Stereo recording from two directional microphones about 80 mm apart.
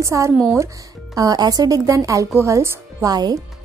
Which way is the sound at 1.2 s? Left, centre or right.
Right.